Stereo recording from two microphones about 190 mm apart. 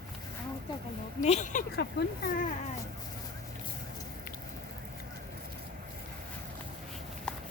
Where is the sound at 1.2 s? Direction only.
40° left (ahead or behind).